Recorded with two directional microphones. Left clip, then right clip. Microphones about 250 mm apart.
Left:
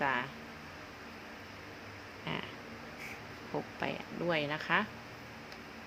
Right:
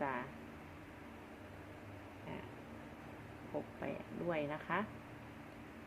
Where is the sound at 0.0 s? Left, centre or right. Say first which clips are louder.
Left 8 dB; left.